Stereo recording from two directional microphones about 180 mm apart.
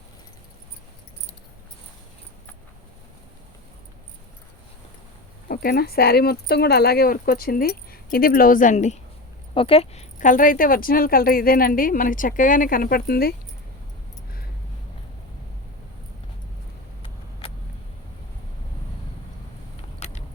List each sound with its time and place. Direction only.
5.5 s speech: 60° left (ahead or behind)
20.0 s keys jangling: 35° left (ahead or behind)